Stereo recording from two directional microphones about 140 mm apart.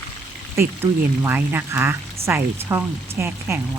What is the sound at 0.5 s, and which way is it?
Speech, 15° right (ahead or behind).